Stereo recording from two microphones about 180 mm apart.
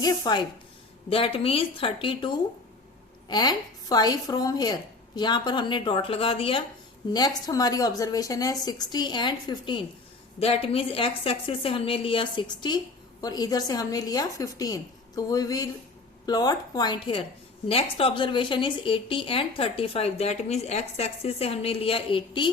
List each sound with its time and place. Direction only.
0.0 s a woman's voice: 25° left (ahead or behind)